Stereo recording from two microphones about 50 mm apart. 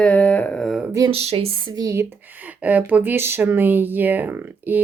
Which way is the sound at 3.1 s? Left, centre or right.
Right.